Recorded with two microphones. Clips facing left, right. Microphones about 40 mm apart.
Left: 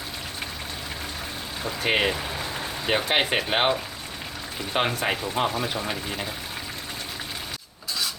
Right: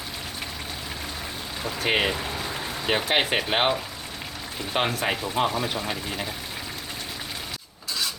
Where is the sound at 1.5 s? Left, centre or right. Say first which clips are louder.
Even; centre.